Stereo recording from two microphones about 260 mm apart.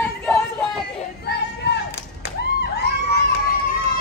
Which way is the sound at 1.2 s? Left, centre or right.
Left.